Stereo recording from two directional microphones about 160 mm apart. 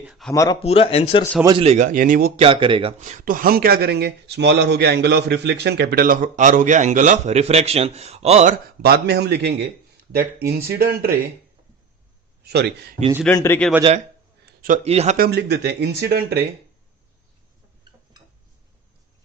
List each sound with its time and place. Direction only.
0.0 s speech: centre (ahead or behind)
0.3 s speech: 20° left (ahead or behind)
0.6 s speech: 40° left (ahead or behind)
1.6 s speech: 50° right (ahead or behind)
2.4 s speech: 35° right (ahead or behind)
3.0 s speech: 50° right (ahead or behind)
8.8 s speech: 85° right
10.2 s speech: 75° right (ahead or behind)
12.5 s speech: 85° right
13.3 s speech: 20° left (ahead or behind)
14.4 s a sound: 65° right (ahead or behind)
14.8 s speech: 40° right (ahead or behind)
15.2 s speech: 90° right